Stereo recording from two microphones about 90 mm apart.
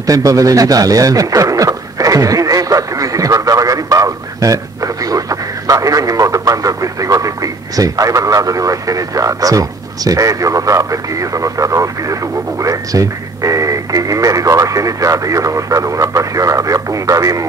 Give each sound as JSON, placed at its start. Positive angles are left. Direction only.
{"t": 0.0, "sound": "radio", "side_deg": -40}
{"t": 12.6, "sound": "speech", "side_deg": -40}